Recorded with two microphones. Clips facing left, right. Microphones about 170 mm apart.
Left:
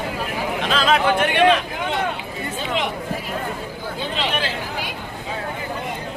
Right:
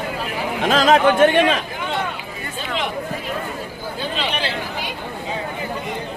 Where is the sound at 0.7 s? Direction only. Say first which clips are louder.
Right 5 dB; 40° right (ahead or behind).